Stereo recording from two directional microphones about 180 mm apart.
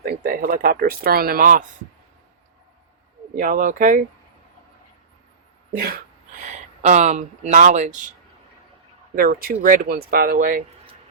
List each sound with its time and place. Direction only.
0.0 s speech: 55° right (ahead or behind)
3.3 s speech: 50° right (ahead or behind)
5.7 s speech: 55° right (ahead or behind)
6.4 s speech: 40° right (ahead or behind)
9.1 s speech: 55° right (ahead or behind)